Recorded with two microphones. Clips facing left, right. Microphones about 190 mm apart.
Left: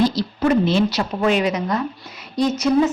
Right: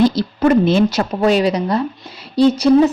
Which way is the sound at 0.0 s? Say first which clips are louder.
Right 4 dB; 55° right (ahead or behind).